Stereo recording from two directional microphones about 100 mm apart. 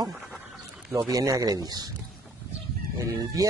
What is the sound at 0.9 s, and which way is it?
Speech, 35° right (ahead or behind).